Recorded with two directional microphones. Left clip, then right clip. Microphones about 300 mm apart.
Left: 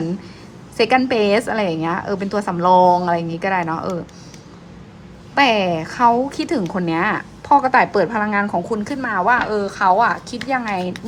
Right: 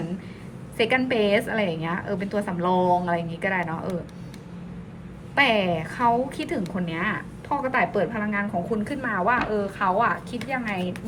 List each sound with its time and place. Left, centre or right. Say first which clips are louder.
0.8 s a woman's voice: left 6 dB; centre
5.3 s a woman's voice: left 5 dB; centre